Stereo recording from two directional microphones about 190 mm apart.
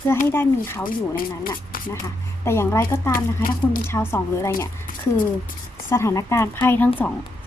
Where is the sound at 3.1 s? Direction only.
45° left (ahead or behind).